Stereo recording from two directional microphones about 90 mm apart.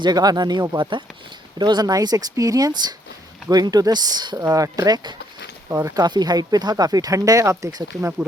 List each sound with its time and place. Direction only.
0.0 s speech: 50° right (ahead or behind)
0.8 s speech: 65° right (ahead or behind)
1.5 s speech: 50° right (ahead or behind)
7.6 s speech: 50° right (ahead or behind)